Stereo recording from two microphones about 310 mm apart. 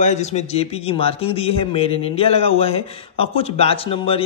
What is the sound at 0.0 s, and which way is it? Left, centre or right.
A man's voice, left.